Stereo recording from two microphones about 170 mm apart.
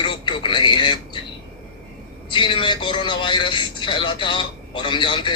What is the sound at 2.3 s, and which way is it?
Speech, 30° left (ahead or behind).